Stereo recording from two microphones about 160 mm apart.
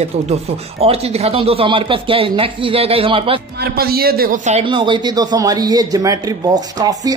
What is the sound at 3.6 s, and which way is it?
A man's voice, 75° right (ahead or behind).